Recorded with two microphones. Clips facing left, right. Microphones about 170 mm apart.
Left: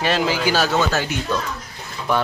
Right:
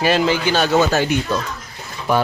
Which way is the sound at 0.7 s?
20° right (ahead or behind).